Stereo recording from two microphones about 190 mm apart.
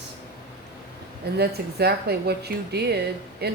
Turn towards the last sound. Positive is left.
turn(degrees=-60)  # may be behind; listen again after turning